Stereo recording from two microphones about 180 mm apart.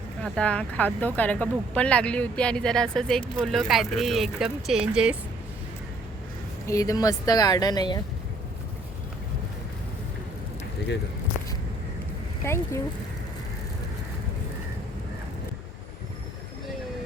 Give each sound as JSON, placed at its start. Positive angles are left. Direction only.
{"t": 0.2, "sound": "speech", "side_deg": 5}
{"t": 6.7, "sound": "speech", "side_deg": 20}
{"t": 12.4, "sound": "speech", "side_deg": 15}